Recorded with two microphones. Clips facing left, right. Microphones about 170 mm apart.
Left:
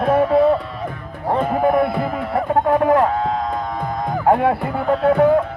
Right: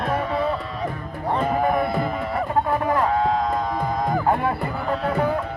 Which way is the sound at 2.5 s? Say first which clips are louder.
Left 7 dB; 65° left (ahead or behind).